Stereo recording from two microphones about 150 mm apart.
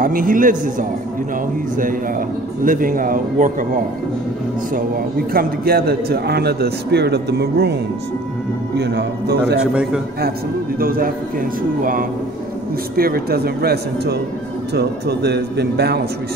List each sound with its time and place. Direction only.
0.0 s a man's voice: 65° right (ahead or behind)
4.7 s a man's voice: 75° right (ahead or behind)
8.8 s a man's voice: 90° right
9.6 s a man's voice: 5° right (ahead or behind)
10.8 s speech: 75° right (ahead or behind)
12.9 s a man's voice: 85° right